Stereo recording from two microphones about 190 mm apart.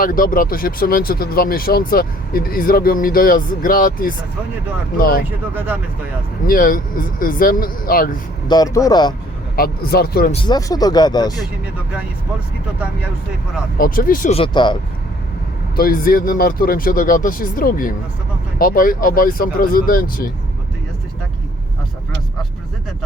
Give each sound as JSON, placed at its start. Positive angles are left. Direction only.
{"t": 0.0, "sound": "speech", "side_deg": 45}
{"t": 5.5, "sound": "speech", "side_deg": -10}
{"t": 6.5, "sound": "speech", "side_deg": 50}
{"t": 8.4, "sound": "speech", "side_deg": 20}
{"t": 9.6, "sound": "speech", "side_deg": 55}
{"t": 10.3, "sound": "speech", "side_deg": 25}
{"t": 13.7, "sound": "speech", "side_deg": 50}
{"t": 14.3, "sound": "speech", "side_deg": 25}
{"t": 15.7, "sound": "speech", "side_deg": 50}